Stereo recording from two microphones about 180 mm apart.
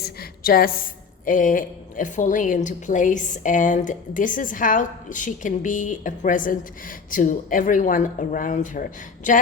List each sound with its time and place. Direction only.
0.0 s a woman's voice: 55° left (ahead or behind)